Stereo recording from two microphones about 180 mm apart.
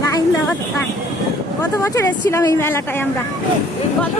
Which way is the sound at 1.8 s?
15° left (ahead or behind).